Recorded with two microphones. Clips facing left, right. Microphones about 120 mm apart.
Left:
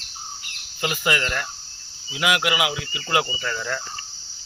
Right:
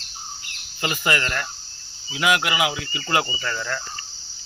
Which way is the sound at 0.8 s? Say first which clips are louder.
Even; 5° left (ahead or behind).